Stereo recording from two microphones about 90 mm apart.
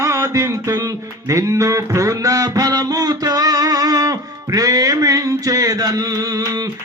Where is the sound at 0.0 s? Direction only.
35° right (ahead or behind).